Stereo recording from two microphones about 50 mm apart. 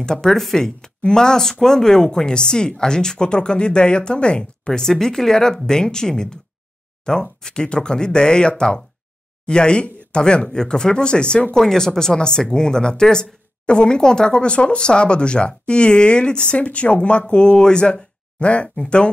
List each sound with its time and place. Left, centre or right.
0.0 s speech: centre